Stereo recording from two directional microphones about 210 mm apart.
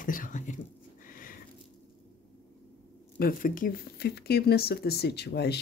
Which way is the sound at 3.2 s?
40° left (ahead or behind).